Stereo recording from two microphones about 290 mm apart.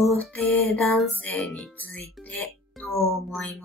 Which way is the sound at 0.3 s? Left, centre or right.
Centre.